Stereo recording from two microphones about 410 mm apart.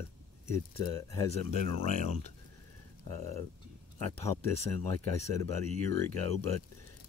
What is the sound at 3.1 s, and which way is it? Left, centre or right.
Speech, centre.